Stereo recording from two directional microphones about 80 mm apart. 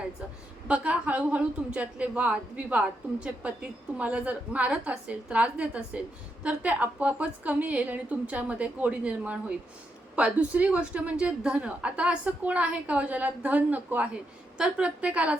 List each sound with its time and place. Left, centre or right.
0.7 s a woman's voice: centre